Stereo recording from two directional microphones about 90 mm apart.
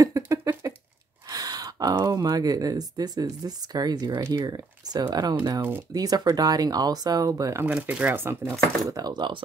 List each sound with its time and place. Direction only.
0.0 s a sound: 40° right (ahead or behind)
1.3 s speech: 45° right (ahead or behind)
5.6 s speech: 25° right (ahead or behind)
5.9 s speech: 45° right (ahead or behind)
7.6 s speech: 20° right (ahead or behind)
8.9 s speech: 50° right (ahead or behind)